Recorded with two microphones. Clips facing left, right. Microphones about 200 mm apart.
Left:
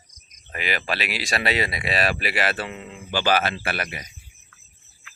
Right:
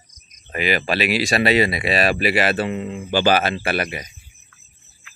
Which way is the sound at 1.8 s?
10° right (ahead or behind).